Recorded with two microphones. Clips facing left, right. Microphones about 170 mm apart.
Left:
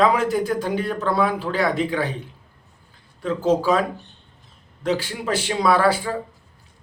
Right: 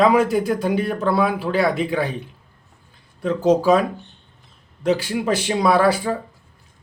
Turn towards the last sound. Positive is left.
turn(degrees=-15)  # may be behind; listen again after turning